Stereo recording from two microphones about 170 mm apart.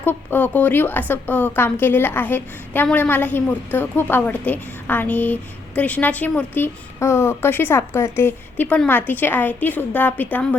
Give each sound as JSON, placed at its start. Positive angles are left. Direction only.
{"t": 0.0, "sound": "a woman's voice", "side_deg": 10}